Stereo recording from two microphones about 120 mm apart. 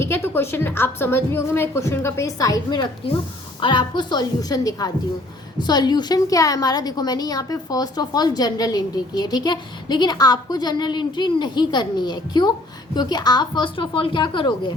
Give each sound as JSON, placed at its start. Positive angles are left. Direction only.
{"t": 0.0, "sound": "a woman's voice", "side_deg": 20}